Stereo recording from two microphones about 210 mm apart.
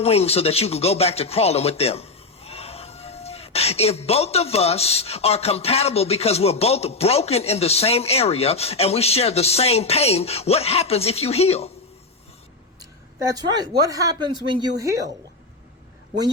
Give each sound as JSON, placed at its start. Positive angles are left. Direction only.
{"t": 0.0, "sound": "speech", "side_deg": 30}
{"t": 12.8, "sound": "a woman's voice", "side_deg": -15}